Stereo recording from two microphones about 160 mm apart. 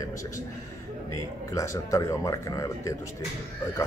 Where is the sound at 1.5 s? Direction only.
20° left (ahead or behind).